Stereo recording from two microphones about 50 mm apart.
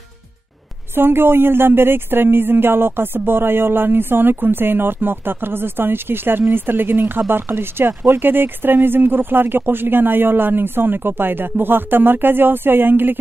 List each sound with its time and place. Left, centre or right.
0.9 s speech: right